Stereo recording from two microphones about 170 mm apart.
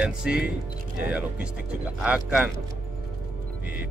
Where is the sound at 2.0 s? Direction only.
5° right (ahead or behind).